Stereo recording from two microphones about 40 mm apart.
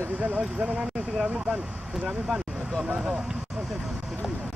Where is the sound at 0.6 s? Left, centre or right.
Right.